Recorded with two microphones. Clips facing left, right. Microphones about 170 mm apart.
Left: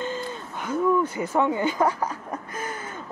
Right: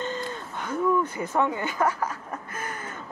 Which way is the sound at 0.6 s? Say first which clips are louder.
Left 2 dB; 10° left (ahead or behind).